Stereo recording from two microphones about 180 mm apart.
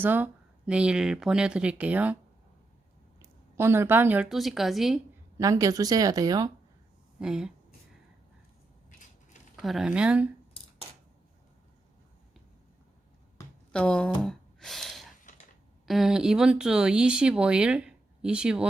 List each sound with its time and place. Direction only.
0.0 s speech: 10° right (ahead or behind)
3.2 s a woman's voice: 15° right (ahead or behind)
5.4 s speech: 20° right (ahead or behind)
7.2 s speech: 5° right (ahead or behind)
9.6 s speech: centre (ahead or behind)
13.7 s speech: 5° left (ahead or behind)
14.3 s gasp: centre (ahead or behind)
15.2 s a sound: 45° left (ahead or behind)
15.9 s speech: centre (ahead or behind)